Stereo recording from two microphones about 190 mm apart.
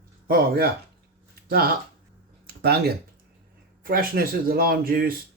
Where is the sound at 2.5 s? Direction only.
55° right (ahead or behind).